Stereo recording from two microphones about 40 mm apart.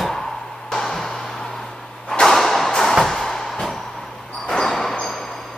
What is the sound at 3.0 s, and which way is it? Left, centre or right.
Music, centre.